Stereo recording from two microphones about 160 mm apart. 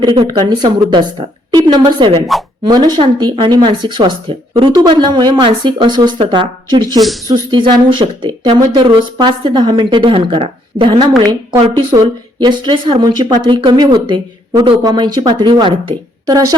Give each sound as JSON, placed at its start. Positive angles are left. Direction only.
{"t": 0.0, "sound": "a woman's voice", "side_deg": -30}